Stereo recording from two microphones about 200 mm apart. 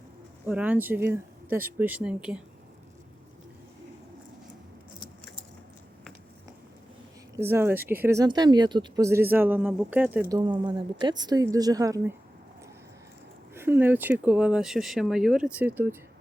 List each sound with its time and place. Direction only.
0.4 s speech: 10° right (ahead or behind)
7.3 s speech: 10° right (ahead or behind)
10.2 s a woman's voice: 20° right (ahead or behind)
13.5 s speech: 10° right (ahead or behind)